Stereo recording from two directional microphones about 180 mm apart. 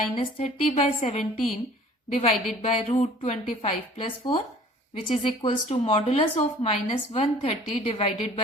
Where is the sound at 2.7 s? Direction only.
45° left (ahead or behind).